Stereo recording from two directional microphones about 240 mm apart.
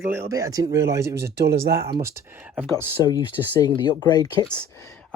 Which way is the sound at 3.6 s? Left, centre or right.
Centre.